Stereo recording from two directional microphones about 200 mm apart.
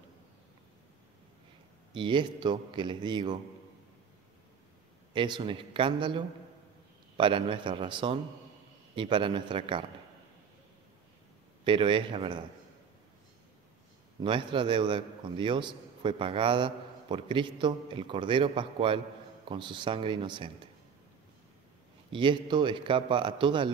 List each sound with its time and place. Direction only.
1.9 s a man's voice: 25° right (ahead or behind)
5.1 s a man's voice: 25° right (ahead or behind)
11.6 s a man's voice: 25° right (ahead or behind)
14.2 s a man's voice: 25° right (ahead or behind)
22.1 s a man's voice: 25° right (ahead or behind)